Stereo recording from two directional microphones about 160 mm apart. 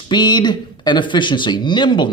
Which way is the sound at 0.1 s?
25° left (ahead or behind).